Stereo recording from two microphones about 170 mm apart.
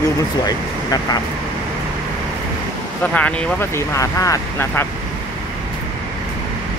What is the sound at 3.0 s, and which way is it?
Speech, 10° left (ahead or behind).